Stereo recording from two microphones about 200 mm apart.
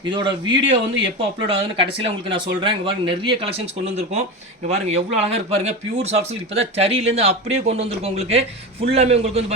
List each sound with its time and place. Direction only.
0.1 s speech: 25° right (ahead or behind)